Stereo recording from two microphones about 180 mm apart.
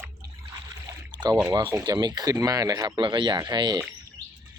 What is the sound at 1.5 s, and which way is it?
Speech, 20° right (ahead or behind).